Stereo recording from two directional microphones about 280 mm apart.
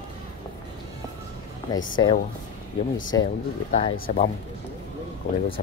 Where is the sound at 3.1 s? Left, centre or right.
Centre.